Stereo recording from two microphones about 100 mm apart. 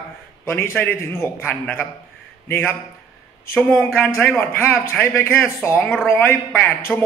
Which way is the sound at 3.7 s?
20° left (ahead or behind).